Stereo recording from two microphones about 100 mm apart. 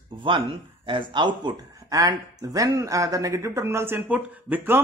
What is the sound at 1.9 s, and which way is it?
Speech, 35° right (ahead or behind).